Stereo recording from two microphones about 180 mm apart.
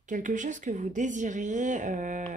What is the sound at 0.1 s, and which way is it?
Speech, 45° right (ahead or behind).